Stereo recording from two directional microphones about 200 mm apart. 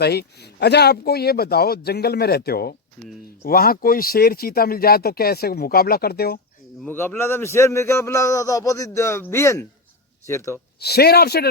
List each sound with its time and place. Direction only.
0.0 s speech: 55° left (ahead or behind)
6.8 s speech: 10° left (ahead or behind)
10.8 s speech: 55° left (ahead or behind)